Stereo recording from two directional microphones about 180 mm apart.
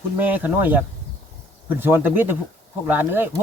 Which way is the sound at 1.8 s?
10° right (ahead or behind).